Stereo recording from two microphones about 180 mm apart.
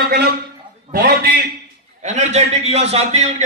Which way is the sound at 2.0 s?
40° right (ahead or behind).